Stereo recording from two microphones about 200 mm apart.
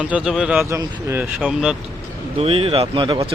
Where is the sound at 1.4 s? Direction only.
Centre (ahead or behind).